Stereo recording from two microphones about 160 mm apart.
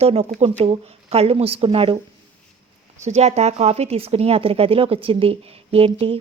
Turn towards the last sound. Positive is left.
turn(degrees=-35)  # may be behind; listen again after turning